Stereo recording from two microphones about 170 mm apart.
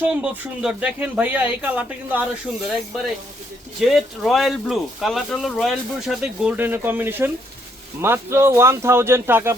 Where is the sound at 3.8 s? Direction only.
Centre (ahead or behind).